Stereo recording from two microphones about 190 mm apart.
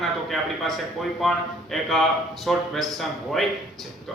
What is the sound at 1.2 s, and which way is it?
Speech, centre (ahead or behind).